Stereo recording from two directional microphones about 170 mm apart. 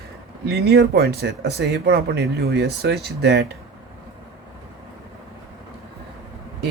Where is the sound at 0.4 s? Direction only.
70° right (ahead or behind).